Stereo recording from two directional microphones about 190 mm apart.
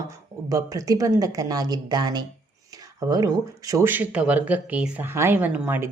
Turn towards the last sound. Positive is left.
turn(degrees=-10)  # may be behind; listen again after turning